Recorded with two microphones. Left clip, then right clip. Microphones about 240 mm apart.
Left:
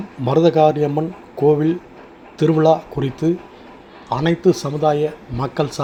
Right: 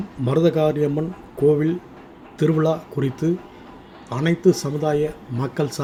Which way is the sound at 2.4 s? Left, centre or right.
Centre.